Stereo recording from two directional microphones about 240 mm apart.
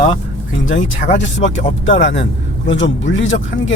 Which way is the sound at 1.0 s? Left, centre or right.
Left.